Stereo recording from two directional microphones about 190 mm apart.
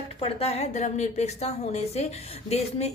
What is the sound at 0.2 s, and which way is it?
A woman's voice, 30° left (ahead or behind).